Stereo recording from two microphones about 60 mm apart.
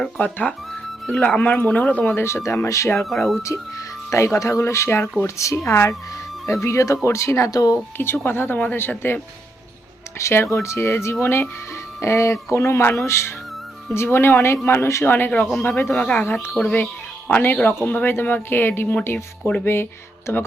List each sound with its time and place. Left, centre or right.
0.2 s speech: left
0.7 s music: centre
1.2 s speech: left
2.2 s speech: left
3.0 s speech: centre
3.4 s speech: left
4.6 s speech: left
7.5 s speech: left
7.9 s speech: left
10.2 s speech: left
15.0 s speech: left
15.4 s speech: centre
16.2 s speech: left
17.2 s speech: left